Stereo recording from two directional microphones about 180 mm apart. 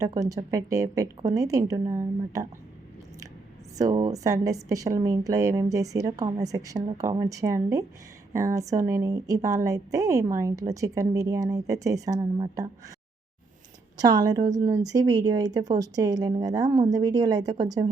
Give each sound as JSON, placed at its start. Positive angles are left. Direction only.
{"t": 0.0, "sound": "speech", "side_deg": -20}
{"t": 3.8, "sound": "speech", "side_deg": -20}
{"t": 14.0, "sound": "speech", "side_deg": -20}